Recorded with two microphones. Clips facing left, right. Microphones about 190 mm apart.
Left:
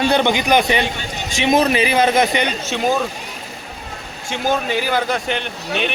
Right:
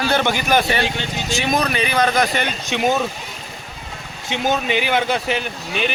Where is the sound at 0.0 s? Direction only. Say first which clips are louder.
Left 3 dB; 20° left (ahead or behind).